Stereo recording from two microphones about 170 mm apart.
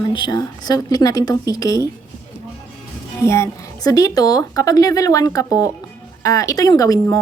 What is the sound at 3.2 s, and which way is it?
A woman's voice, 15° left (ahead or behind).